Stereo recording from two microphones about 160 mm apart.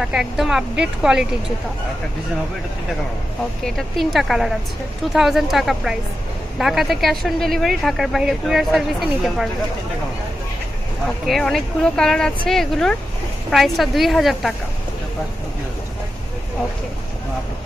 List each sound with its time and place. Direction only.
0.0 s speech: 5° right (ahead or behind)
3.6 s speech: centre (ahead or behind)
11.2 s speech: centre (ahead or behind)